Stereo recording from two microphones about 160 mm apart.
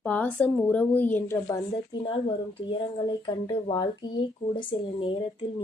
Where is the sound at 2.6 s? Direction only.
30° left (ahead or behind).